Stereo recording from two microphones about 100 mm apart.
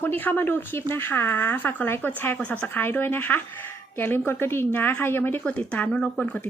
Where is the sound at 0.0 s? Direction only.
20° left (ahead or behind).